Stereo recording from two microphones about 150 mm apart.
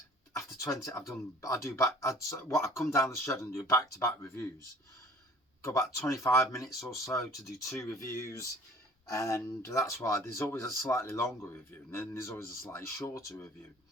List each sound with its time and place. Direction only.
0.3 s a sound: 20° left (ahead or behind)
0.9 s speech: 20° left (ahead or behind)
5.6 s speech: 20° left (ahead or behind)